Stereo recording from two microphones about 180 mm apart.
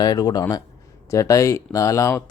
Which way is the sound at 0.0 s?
20° left (ahead or behind).